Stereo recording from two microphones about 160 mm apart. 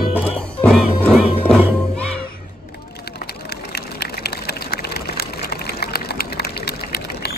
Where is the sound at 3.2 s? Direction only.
90° left.